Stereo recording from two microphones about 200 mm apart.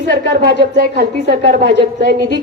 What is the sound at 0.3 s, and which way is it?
Speech, 45° right (ahead or behind).